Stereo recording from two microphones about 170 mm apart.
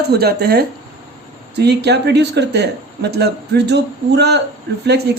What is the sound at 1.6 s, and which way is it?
Speech, 75° right (ahead or behind).